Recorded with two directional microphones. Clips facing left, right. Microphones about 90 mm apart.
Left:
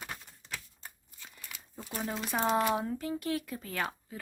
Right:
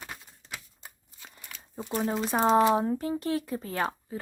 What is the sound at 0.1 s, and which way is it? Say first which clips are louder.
Typewriter: even; 10° right (ahead or behind).